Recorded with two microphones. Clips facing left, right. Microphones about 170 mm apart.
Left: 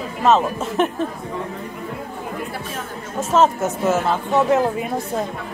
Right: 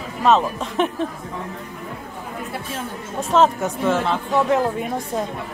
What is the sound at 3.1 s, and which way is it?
Speech, centre (ahead or behind).